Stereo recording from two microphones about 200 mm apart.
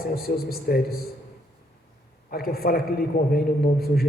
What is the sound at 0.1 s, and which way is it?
Speech, 50° left (ahead or behind).